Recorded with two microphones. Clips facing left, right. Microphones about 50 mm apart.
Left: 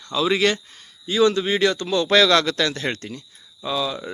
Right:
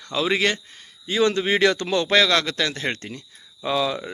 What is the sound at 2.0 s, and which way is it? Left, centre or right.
Speech, centre.